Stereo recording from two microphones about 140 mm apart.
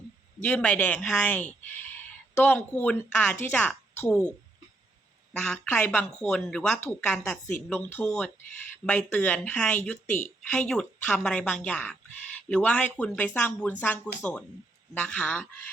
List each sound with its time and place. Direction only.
0.4 s speech: 10° left (ahead or behind)
5.4 s speech: 10° left (ahead or behind)